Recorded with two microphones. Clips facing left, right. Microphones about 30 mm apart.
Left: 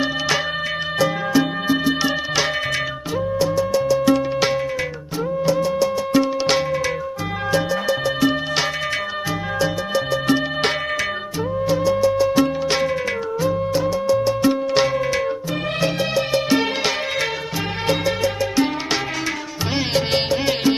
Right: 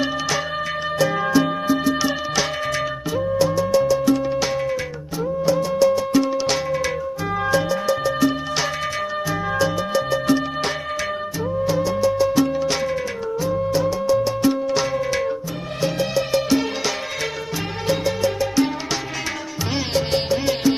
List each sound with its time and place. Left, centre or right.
0.9 s music: centre
3.2 s music: centre
5.5 s music: left
6.4 s music: left
11.7 s music: left
14.4 s music: left
15.0 s music: left